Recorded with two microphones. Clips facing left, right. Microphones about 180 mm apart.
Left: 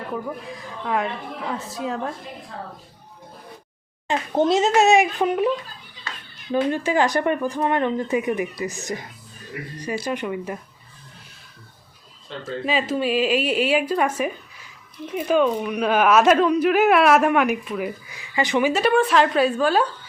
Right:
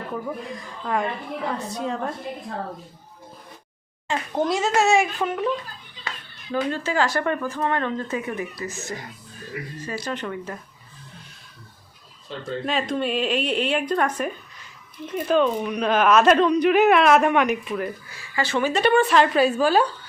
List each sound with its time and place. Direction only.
0.5 s a woman's voice: centre (ahead or behind)
4.1 s a child's voice: 25° left (ahead or behind)
6.5 s speech: 20° left (ahead or behind)
12.5 s a woman's voice: centre (ahead or behind)
18.7 s a woman's voice: 5° left (ahead or behind)